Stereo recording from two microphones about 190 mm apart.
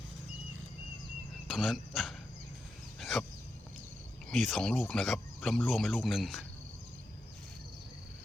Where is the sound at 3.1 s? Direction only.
Centre (ahead or behind).